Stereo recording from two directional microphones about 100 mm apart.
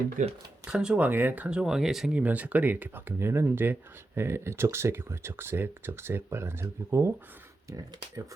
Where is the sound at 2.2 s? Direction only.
15° right (ahead or behind).